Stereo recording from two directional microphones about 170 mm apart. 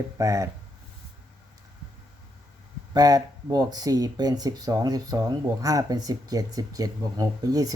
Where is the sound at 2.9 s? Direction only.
20° right (ahead or behind).